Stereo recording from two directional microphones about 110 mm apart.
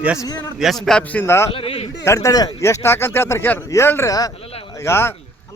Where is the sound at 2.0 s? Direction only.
30° left (ahead or behind).